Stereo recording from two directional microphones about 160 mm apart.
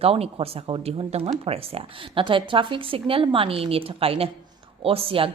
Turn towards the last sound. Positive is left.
turn(degrees=-35)  # may be behind; listen again after turning